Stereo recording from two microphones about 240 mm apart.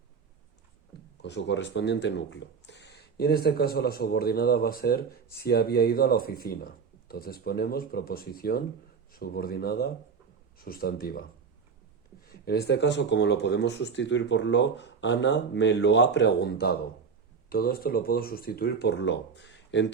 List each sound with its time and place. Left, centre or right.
1.2 s speech: left
12.3 s speech: left